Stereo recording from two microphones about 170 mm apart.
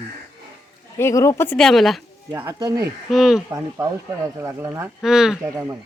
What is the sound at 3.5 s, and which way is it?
Speech, 15° right (ahead or behind).